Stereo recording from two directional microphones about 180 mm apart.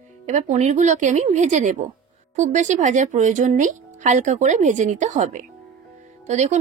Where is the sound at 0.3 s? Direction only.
40° right (ahead or behind).